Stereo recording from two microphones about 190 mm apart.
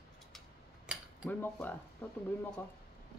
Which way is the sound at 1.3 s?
10° left (ahead or behind).